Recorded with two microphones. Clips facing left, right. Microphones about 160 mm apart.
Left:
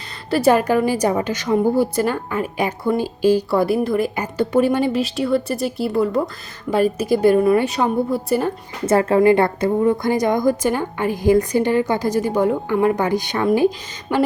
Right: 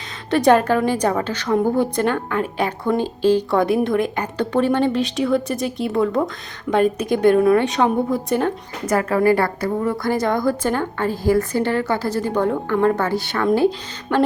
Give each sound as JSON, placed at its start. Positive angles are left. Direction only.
{"t": 0.3, "sound": "a woman's voice", "side_deg": 5}
{"t": 8.9, "sound": "a woman's voice", "side_deg": 25}